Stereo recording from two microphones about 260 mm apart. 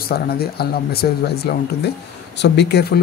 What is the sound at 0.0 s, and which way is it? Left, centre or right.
A man's voice, left.